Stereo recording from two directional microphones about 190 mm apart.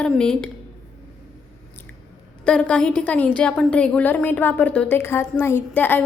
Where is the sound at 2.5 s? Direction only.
5° left (ahead or behind).